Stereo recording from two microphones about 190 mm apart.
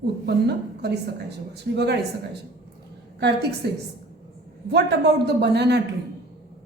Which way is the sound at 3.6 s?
60° right (ahead or behind).